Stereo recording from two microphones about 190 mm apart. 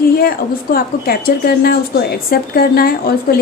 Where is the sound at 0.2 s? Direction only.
50° left (ahead or behind).